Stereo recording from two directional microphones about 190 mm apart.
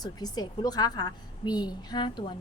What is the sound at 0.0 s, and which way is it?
A woman's voice, 20° left (ahead or behind).